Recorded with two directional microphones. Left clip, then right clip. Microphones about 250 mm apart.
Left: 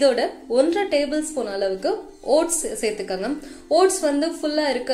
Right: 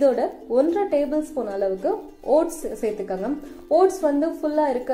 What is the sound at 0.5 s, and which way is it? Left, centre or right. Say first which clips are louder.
Speech: left 1 dB; centre.